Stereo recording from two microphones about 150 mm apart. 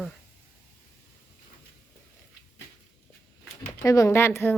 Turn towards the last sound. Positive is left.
turn(degrees=15)  # may be behind; listen again after turning